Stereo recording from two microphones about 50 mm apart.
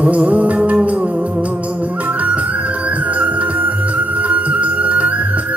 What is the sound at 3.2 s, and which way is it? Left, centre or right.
Music, right.